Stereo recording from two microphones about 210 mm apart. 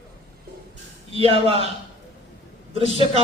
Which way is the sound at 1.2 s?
30° right (ahead or behind).